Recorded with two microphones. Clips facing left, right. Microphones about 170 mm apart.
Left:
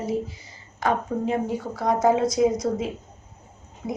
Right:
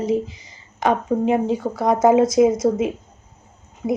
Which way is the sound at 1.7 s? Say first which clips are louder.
Right 8 dB; 55° right (ahead or behind).